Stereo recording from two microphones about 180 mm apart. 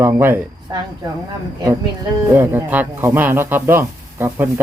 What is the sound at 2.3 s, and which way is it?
A man's voice, 10° right (ahead or behind).